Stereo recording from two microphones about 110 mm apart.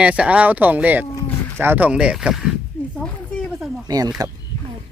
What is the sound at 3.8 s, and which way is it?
Speech, 35° right (ahead or behind).